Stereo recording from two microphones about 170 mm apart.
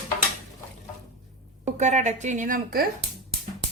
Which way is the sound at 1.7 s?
45° right (ahead or behind).